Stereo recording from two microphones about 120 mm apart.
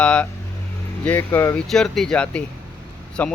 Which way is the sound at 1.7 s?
5° left (ahead or behind).